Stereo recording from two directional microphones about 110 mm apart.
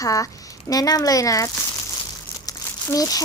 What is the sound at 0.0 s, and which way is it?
Speech, 30° left (ahead or behind).